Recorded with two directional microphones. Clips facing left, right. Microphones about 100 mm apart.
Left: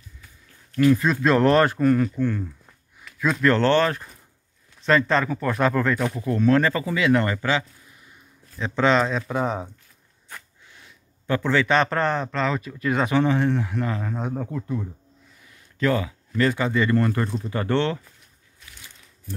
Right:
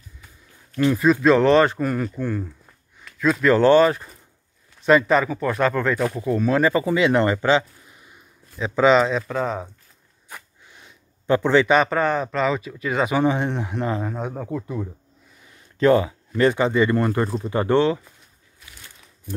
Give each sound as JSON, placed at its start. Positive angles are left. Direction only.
{"t": 0.9, "sound": "speech", "side_deg": -10}
{"t": 1.2, "sound": "speech", "side_deg": 0}
{"t": 3.0, "sound": "speech", "side_deg": 5}
{"t": 6.8, "sound": "speech", "side_deg": -25}
{"t": 8.5, "sound": "speech", "side_deg": -5}
{"t": 9.3, "sound": "speech", "side_deg": 15}
{"t": 10.3, "sound": "a sound", "side_deg": -20}
{"t": 11.7, "sound": "speech", "side_deg": -5}
{"t": 13.2, "sound": "speech", "side_deg": -20}
{"t": 14.1, "sound": "speech", "side_deg": -5}
{"t": 15.4, "sound": "a sound", "side_deg": -30}
{"t": 16.3, "sound": "speech", "side_deg": -20}
{"t": 18.6, "sound": "a sound", "side_deg": -5}